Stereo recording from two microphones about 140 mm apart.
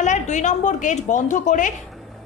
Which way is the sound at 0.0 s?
60° left (ahead or behind).